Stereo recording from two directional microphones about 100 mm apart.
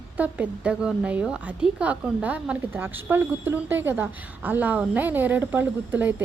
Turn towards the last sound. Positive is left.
turn(degrees=-15)  # may be behind; listen again after turning